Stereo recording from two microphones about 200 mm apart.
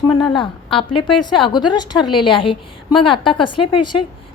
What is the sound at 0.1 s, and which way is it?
A woman's voice, 25° left (ahead or behind).